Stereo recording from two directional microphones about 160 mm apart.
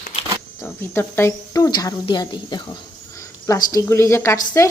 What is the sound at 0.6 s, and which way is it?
Speech, 15° left (ahead or behind).